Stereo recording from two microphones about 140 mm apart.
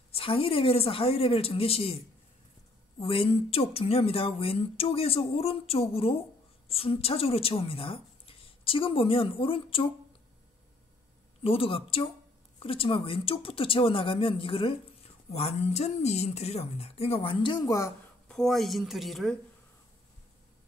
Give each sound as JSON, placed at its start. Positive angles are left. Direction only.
{"t": 0.1, "sound": "speech", "side_deg": 40}
{"t": 3.0, "sound": "a woman's voice", "side_deg": 40}
{"t": 11.4, "sound": "a woman's voice", "side_deg": 40}
{"t": 18.3, "sound": "speech", "side_deg": 0}